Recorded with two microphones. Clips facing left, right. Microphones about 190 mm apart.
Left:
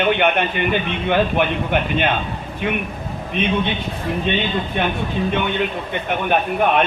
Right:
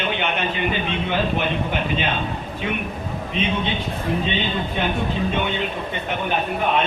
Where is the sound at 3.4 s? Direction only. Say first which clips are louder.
Left 3 dB; 60° left (ahead or behind).